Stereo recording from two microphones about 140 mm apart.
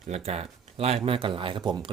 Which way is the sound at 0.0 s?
50° right (ahead or behind).